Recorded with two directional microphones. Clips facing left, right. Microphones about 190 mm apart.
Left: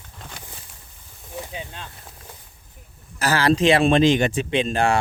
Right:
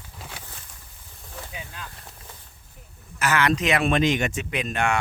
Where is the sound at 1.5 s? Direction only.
30° left (ahead or behind).